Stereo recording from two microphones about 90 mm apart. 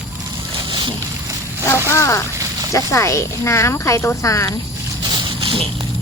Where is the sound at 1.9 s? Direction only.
30° left (ahead or behind).